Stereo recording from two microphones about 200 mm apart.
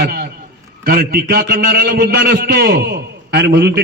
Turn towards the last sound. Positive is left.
turn(degrees=-55)  # may be behind; listen again after turning